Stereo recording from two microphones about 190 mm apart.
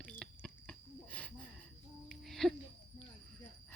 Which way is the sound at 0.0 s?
5° left (ahead or behind).